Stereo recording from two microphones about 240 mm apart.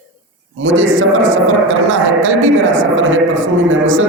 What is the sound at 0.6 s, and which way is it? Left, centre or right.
A man's voice, right.